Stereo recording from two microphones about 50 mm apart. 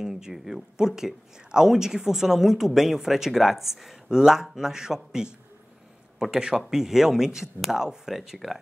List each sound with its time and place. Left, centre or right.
0.0 s speech: centre